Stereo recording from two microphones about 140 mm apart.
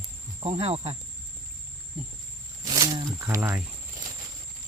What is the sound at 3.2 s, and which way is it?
Speech, 20° right (ahead or behind).